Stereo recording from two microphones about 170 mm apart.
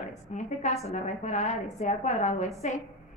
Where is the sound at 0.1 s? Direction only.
45° left (ahead or behind).